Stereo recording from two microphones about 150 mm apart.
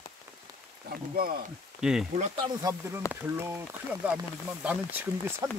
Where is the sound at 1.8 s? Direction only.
5° right (ahead or behind).